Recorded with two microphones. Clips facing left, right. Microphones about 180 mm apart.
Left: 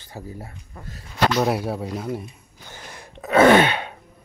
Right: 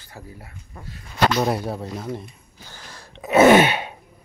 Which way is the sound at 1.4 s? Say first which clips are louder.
Left 1 dB; 5° left (ahead or behind).